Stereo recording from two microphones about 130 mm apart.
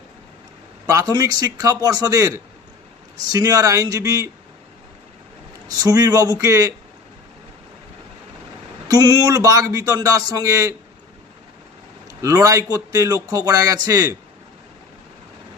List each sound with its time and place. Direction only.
0.8 s a man's voice: 25° right (ahead or behind)
5.7 s a man's voice: 30° right (ahead or behind)
8.8 s a man's voice: 30° right (ahead or behind)
12.2 s a man's voice: 25° right (ahead or behind)